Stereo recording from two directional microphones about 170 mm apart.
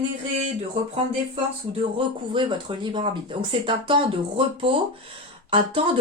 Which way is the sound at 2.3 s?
30° right (ahead or behind).